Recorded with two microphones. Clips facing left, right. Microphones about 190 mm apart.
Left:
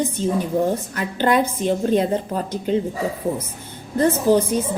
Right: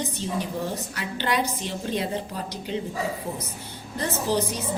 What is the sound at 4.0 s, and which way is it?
Speech, 50° left (ahead or behind).